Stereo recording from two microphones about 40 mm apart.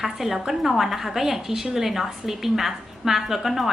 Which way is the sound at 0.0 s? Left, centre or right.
Centre.